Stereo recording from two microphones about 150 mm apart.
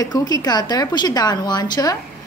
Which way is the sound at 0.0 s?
25° left (ahead or behind).